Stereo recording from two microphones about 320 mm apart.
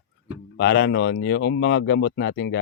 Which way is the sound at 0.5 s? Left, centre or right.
Left.